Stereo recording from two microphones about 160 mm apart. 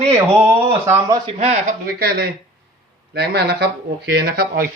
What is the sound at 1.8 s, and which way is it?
Speech, 75° right (ahead or behind).